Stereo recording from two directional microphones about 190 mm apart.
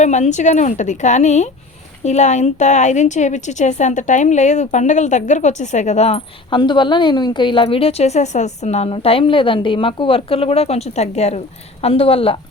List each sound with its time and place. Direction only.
0.0 s a woman's voice: 40° left (ahead or behind)